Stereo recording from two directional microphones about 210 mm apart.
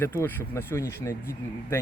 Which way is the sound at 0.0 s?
10° left (ahead or behind).